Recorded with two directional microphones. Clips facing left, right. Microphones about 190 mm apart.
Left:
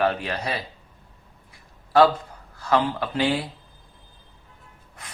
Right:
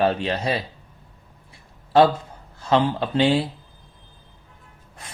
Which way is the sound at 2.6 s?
25° right (ahead or behind).